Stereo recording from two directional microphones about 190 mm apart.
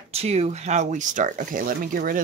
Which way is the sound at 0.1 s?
35° right (ahead or behind).